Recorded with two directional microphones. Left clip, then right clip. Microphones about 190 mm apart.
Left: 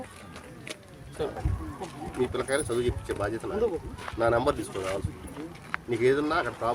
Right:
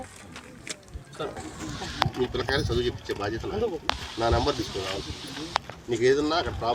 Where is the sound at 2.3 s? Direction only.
15° left (ahead or behind).